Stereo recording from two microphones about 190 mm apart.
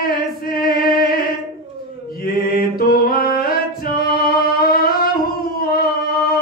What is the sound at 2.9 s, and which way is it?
Singing, 50° left (ahead or behind).